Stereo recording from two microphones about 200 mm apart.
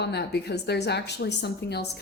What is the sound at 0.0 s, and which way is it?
A woman's voice, 55° left (ahead or behind).